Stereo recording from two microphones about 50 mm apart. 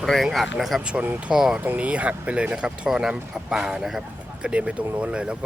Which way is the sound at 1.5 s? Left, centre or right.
Right.